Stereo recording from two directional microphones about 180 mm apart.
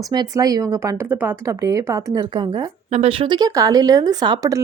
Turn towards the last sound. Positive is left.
turn(degrees=-20)  # may be behind; listen again after turning